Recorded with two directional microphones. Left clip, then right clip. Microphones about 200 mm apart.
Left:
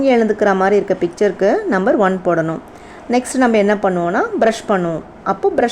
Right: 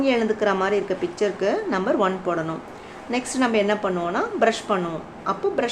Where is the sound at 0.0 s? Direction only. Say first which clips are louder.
Left 7 dB; 40° left (ahead or behind).